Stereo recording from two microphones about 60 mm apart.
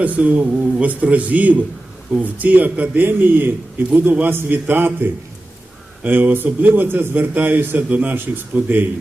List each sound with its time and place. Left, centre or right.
0.0 s speech: right
3.1 s a man's voice: right